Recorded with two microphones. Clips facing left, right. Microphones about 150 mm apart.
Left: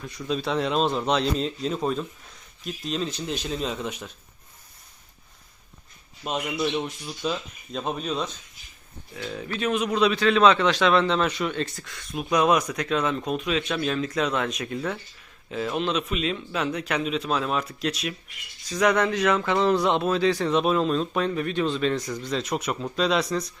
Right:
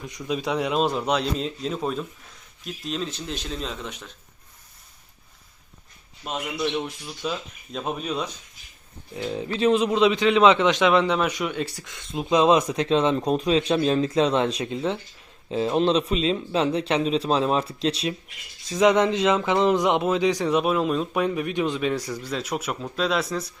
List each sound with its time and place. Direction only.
0.0 s speech: 20° right (ahead or behind); by 4.1 s 5° left (ahead or behind)
6.2 s speech: centre (ahead or behind)
9.1 s a man's voice: 25° right (ahead or behind); by 23.2 s centre (ahead or behind)